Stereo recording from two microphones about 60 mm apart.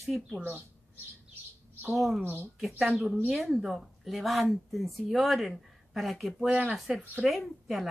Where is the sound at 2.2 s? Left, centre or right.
Right.